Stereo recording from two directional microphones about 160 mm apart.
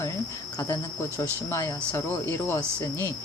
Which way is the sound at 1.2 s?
15° left (ahead or behind).